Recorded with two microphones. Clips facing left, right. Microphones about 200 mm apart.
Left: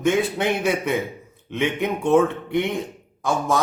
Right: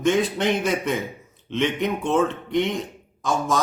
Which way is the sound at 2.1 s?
10° left (ahead or behind).